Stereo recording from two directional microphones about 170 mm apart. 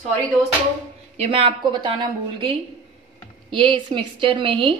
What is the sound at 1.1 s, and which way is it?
A woman's voice, 35° right (ahead or behind).